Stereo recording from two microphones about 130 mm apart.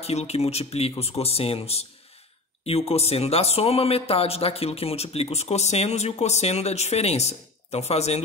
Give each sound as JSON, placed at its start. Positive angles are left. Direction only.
{"t": 0.0, "sound": "speech", "side_deg": 55}